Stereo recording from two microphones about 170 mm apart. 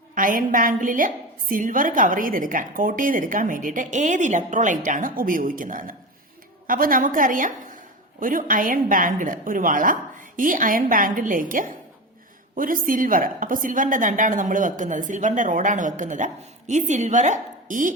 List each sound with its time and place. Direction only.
0.1 s a woman's voice: 55° right (ahead or behind)